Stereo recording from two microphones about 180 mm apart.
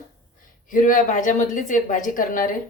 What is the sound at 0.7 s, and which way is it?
A woman's voice, 50° left (ahead or behind).